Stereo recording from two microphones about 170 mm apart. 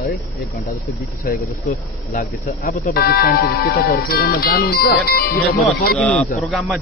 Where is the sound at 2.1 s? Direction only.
50° left (ahead or behind).